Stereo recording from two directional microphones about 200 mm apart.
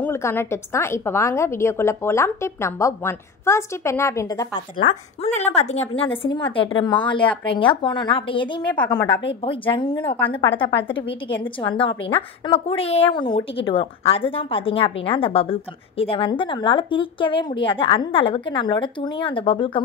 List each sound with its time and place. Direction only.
0.0 s a woman's voice: 10° left (ahead or behind)
4.8 s speech: 35° left (ahead or behind)